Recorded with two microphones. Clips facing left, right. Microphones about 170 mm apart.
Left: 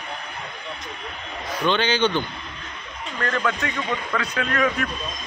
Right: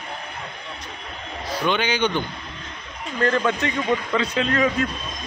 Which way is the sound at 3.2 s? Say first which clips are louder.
Right 4 dB; 25° right (ahead or behind).